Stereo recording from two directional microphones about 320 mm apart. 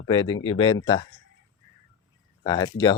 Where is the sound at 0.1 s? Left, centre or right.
Centre.